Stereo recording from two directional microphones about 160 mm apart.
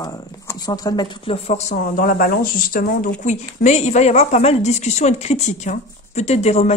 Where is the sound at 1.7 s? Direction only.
60° left (ahead or behind).